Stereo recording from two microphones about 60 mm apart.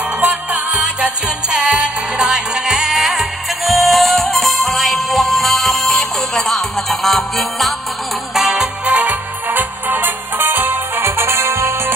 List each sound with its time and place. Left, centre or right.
0.2 s music: right; by 8.6 s centre
8.8 s music: right